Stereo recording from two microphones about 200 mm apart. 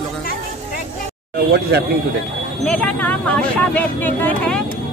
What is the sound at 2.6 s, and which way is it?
Speech, 5° left (ahead or behind).